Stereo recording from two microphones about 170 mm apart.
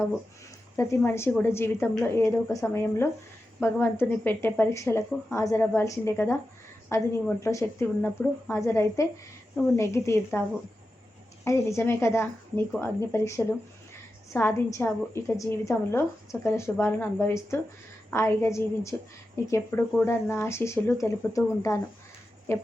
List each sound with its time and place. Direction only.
0.8 s a woman's voice: 15° left (ahead or behind)
11.4 s a woman's voice: 15° left (ahead or behind)